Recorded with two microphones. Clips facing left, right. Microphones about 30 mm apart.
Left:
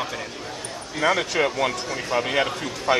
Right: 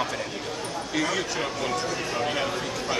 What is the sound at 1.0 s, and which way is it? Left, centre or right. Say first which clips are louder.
Speech: left 7 dB; left.